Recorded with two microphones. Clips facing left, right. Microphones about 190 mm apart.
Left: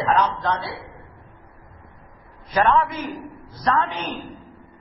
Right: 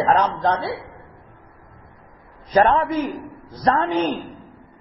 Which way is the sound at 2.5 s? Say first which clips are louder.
Right 3 dB; 35° right (ahead or behind).